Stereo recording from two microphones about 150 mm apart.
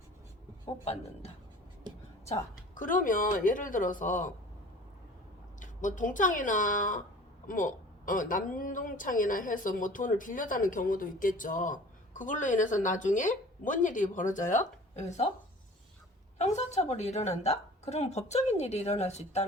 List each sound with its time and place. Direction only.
0.6 s a woman's voice: 45° left (ahead or behind)
2.2 s speech: 55° left (ahead or behind)
5.5 s speech: 60° left (ahead or behind)
16.4 s a woman's voice: 50° left (ahead or behind)